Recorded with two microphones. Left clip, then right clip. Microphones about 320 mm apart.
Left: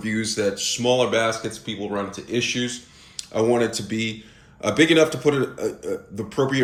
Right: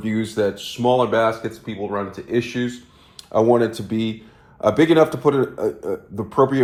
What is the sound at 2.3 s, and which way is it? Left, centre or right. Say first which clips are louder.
Speech: right 1 dB; centre.